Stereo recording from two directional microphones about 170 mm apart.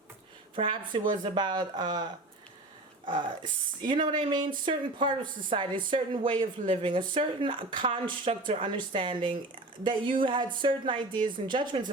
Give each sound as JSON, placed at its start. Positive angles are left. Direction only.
{"t": 0.5, "sound": "speech", "side_deg": -30}
{"t": 3.8, "sound": "speech", "side_deg": -25}